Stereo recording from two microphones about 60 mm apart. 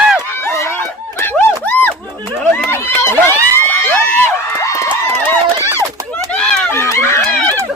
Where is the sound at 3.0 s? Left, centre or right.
Left.